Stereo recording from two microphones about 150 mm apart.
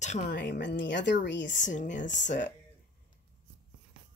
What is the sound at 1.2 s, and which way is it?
Speech, 60° left (ahead or behind).